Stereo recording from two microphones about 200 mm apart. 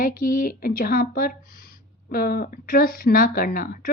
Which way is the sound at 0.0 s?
45° left (ahead or behind).